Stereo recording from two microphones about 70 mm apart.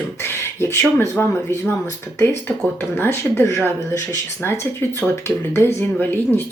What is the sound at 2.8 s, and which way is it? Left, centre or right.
Speech, left.